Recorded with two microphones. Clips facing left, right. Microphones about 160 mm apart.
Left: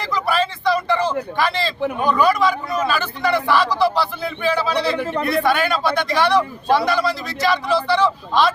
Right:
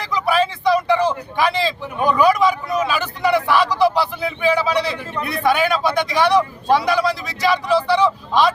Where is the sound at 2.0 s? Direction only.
10° right (ahead or behind).